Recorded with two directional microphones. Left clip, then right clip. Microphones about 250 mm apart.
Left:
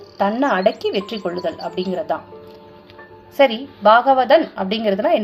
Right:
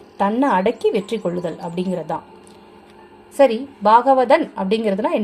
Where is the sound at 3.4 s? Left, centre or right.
Right.